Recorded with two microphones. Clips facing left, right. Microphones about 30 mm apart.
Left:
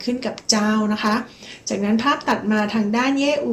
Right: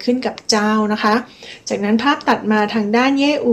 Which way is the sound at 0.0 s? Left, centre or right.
Right.